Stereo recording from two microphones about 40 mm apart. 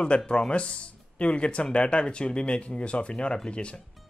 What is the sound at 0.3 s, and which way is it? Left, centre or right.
Speech, left.